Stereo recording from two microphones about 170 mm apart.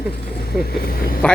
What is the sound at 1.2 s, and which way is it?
Speech, 10° left (ahead or behind).